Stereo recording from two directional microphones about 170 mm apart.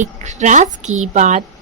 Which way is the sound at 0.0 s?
45° right (ahead or behind).